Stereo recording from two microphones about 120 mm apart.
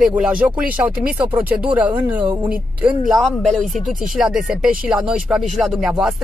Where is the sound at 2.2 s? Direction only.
40° right (ahead or behind).